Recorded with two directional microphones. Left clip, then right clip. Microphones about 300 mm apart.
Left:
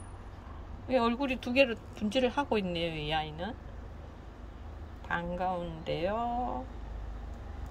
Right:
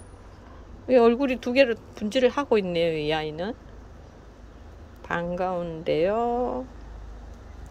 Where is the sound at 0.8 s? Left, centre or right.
Centre.